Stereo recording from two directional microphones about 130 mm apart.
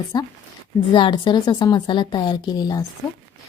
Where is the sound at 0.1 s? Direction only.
35° left (ahead or behind).